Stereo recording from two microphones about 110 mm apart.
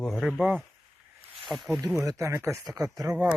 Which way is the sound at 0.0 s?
Centre (ahead or behind).